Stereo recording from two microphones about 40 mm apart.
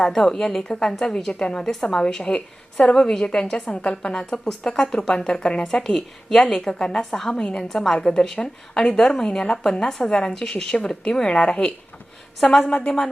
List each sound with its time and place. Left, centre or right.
0.1 s a woman's voice: centre
2.0 s a woman's voice: left
5.6 s a woman's voice: centre